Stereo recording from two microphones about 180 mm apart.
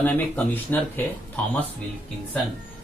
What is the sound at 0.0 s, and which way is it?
Speech, 10° left (ahead or behind).